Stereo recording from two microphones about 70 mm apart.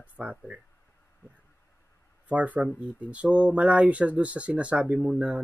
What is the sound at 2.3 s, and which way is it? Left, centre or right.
Speech, right.